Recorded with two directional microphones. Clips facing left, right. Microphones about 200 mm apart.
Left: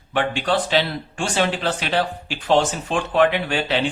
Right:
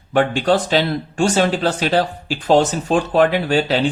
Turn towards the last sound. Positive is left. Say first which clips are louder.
# right 5 dB
turn(degrees=-40)  # may be behind; listen again after turning